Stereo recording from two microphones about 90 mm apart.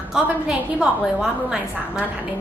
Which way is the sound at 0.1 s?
5° right (ahead or behind).